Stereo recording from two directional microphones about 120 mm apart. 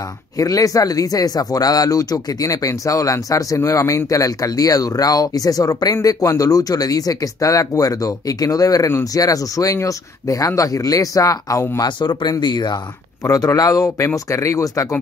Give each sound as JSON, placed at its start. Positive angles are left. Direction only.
{"t": 0.4, "sound": "speech", "side_deg": 30}
{"t": 12.0, "sound": "speech", "side_deg": 40}